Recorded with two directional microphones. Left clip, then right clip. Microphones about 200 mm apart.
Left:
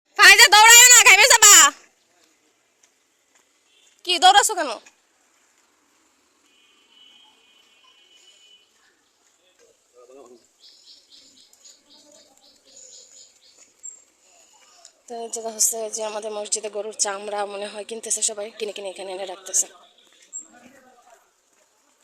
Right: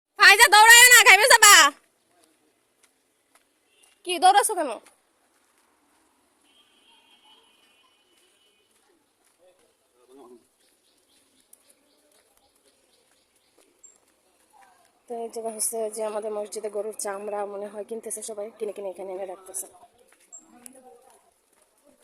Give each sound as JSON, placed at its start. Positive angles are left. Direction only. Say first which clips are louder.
{"t": 0.1, "sound": "a sound", "louder": "left 3 dB", "side_deg": -10}
{"t": 4.0, "sound": "a woman's voice", "louder": "left 4 dB", "side_deg": -15}
{"t": 15.0, "sound": "a woman's voice", "louder": "left 1 dB", "side_deg": -15}